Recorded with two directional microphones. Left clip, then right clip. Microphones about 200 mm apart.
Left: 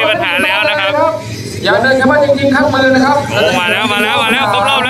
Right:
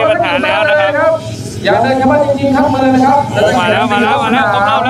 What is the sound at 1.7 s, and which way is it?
Speech, 40° left (ahead or behind).